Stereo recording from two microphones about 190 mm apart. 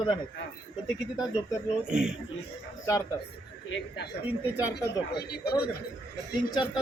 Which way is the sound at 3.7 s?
90° left.